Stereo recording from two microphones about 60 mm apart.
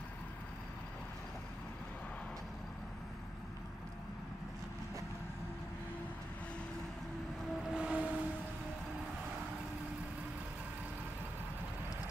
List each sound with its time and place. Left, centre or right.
7.7 s vehicle: right